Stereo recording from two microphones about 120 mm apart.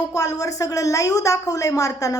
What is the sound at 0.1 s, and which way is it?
Speech, 30° left (ahead or behind).